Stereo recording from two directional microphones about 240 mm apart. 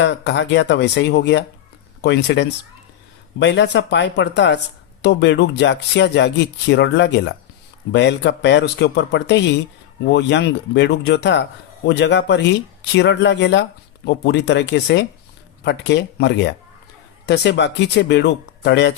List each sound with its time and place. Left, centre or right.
0.0 s speech: left